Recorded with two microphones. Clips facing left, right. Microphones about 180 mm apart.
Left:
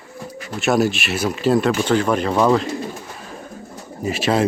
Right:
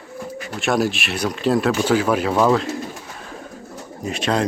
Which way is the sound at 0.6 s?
Centre (ahead or behind).